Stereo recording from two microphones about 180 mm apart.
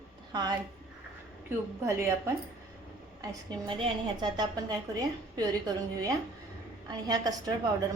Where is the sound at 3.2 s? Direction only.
25° right (ahead or behind).